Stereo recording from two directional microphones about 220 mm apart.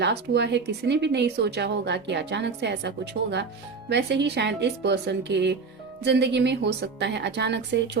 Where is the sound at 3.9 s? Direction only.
50° right (ahead or behind).